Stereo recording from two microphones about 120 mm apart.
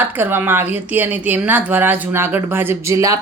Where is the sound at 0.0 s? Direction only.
15° right (ahead or behind).